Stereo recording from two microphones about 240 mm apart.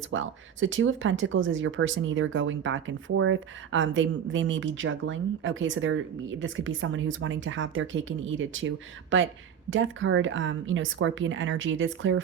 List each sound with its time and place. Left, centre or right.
0.1 s speech: right